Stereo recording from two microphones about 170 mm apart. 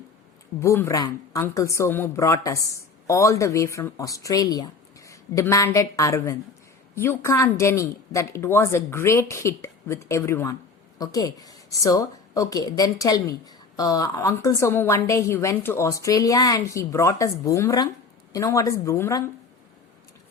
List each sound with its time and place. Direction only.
0.6 s a woman's voice: 15° left (ahead or behind)